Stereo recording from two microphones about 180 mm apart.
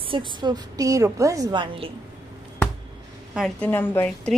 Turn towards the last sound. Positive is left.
turn(degrees=10)  # may be behind; listen again after turning